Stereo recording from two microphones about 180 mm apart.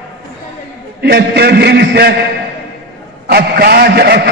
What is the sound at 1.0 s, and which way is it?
A man's voice, 65° right (ahead or behind).